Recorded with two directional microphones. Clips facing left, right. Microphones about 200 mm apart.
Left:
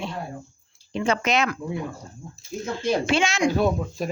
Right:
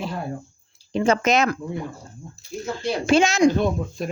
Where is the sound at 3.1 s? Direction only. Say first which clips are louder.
Right 5 dB; 40° right (ahead or behind).